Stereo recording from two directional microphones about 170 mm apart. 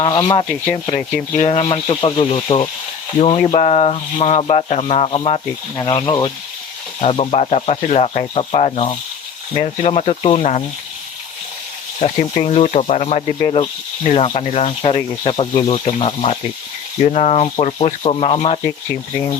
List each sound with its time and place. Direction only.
0.0 s speech: 25° left (ahead or behind)
11.9 s speech: 40° left (ahead or behind)
13.4 s speech: 30° left (ahead or behind)